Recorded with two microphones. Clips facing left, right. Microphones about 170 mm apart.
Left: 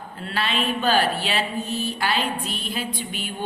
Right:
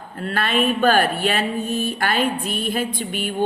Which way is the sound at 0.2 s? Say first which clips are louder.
Right 5 dB; 50° right (ahead or behind).